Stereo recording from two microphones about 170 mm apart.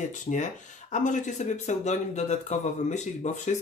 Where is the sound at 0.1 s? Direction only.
45° left (ahead or behind).